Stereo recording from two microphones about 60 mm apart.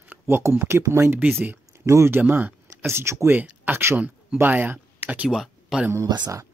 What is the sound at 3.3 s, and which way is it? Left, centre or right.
Speech, right.